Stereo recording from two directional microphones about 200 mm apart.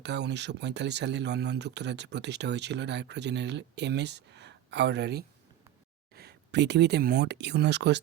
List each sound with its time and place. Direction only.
0.0 s speech: 60° right (ahead or behind)